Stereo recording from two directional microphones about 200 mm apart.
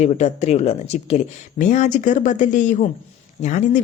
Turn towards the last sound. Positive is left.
turn(degrees=35)  # may be behind; listen again after turning